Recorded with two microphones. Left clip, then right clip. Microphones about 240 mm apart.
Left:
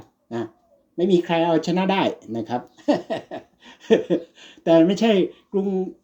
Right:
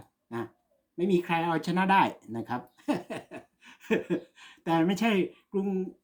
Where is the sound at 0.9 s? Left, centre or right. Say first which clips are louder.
Left 8 dB; centre.